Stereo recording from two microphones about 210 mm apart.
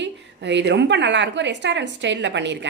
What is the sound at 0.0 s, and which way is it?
A woman's voice, 55° right (ahead or behind).